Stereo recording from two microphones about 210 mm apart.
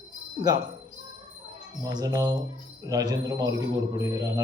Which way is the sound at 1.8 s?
20° right (ahead or behind).